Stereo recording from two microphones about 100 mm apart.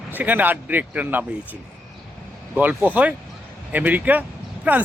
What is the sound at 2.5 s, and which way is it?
Speech, 15° right (ahead or behind).